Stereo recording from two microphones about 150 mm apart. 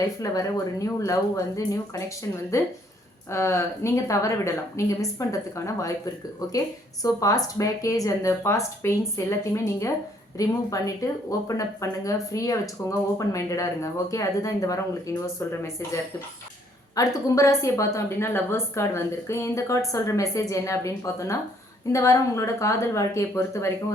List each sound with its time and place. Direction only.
0.2 s speech: 20° left (ahead or behind)
16.9 s speech: 20° left (ahead or behind)